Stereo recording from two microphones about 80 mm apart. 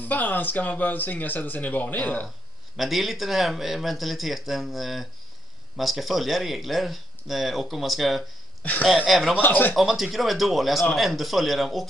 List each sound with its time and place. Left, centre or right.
0.0 s speech: left
2.8 s speech: centre
9.4 s speech: left
9.8 s speech: centre